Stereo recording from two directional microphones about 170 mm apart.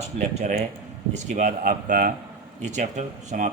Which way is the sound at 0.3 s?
40° right (ahead or behind).